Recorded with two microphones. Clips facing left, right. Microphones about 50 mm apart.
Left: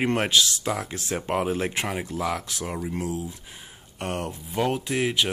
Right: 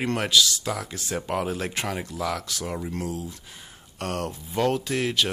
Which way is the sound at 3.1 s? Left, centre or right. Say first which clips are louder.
Left 2 dB; left.